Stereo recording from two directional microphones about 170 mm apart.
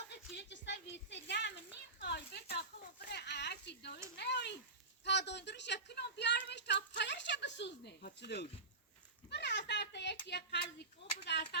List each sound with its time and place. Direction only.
0.3 s speech: 90° left
2.0 s speech: 75° left (ahead or behind)
3.1 s speech: 80° left